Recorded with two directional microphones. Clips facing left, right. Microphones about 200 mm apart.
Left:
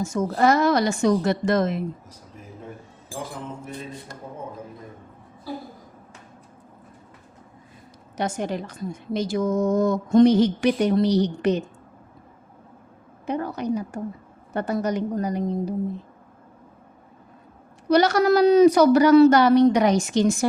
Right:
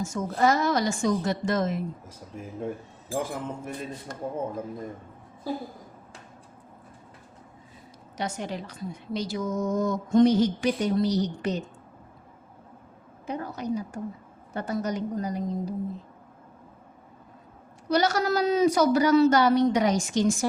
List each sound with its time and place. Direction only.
0.0 s a woman's voice: 60° left (ahead or behind)
8.1 s a woman's voice: 50° left (ahead or behind)
13.2 s a woman's voice: 65° left (ahead or behind)
17.8 s a woman's voice: 65° left (ahead or behind)